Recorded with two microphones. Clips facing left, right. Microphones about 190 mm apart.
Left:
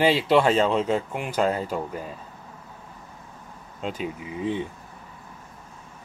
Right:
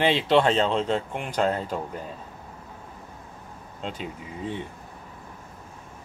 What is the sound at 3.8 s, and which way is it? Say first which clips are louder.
Speech: left 4 dB; 10° left (ahead or behind).